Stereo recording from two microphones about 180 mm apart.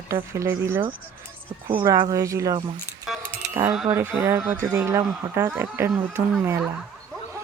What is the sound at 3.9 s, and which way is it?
Speech, 15° right (ahead or behind).